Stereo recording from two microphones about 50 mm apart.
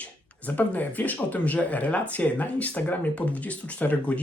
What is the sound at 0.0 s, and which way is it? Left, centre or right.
Speech, left.